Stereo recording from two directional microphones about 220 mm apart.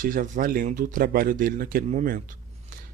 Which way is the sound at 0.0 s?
40° right (ahead or behind).